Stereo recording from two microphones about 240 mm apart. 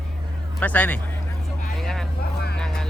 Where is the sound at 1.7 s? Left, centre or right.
Centre.